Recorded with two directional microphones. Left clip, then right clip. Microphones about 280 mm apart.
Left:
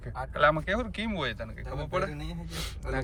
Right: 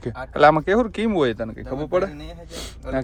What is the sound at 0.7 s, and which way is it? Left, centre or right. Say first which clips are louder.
Speech: right 11 dB; right.